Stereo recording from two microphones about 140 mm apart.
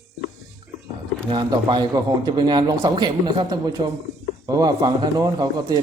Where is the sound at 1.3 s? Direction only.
30° right (ahead or behind).